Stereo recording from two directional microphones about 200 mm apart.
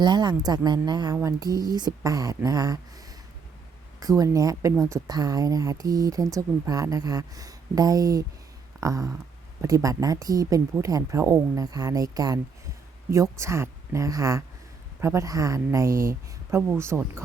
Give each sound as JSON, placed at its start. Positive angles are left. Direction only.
{"t": 0.0, "sound": "a woman's voice", "side_deg": -20}
{"t": 4.2, "sound": "speech", "side_deg": -15}
{"t": 13.4, "sound": "speech", "side_deg": -15}